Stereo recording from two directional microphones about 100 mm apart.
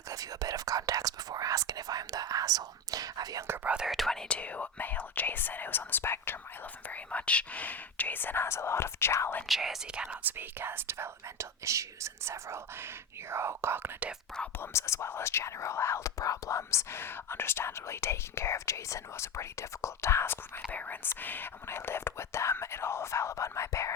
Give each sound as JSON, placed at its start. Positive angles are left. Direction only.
{"t": 0.1, "sound": "speech", "side_deg": -35}
{"t": 3.4, "sound": "speech", "side_deg": -25}
{"t": 3.7, "sound": "speech", "side_deg": -5}
{"t": 9.5, "sound": "speech", "side_deg": -5}
{"t": 10.3, "sound": "speech", "side_deg": -20}
{"t": 14.6, "sound": "speech", "side_deg": 30}